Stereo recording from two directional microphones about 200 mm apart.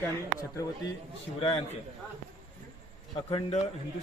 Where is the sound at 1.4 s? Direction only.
30° left (ahead or behind).